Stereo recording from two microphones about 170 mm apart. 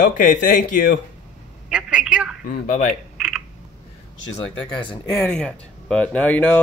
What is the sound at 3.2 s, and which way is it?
Typing, 5° right (ahead or behind).